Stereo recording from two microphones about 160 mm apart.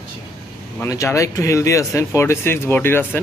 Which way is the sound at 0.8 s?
20° left (ahead or behind).